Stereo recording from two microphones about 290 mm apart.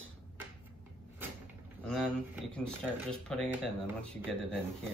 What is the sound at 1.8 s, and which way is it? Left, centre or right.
Speech, centre.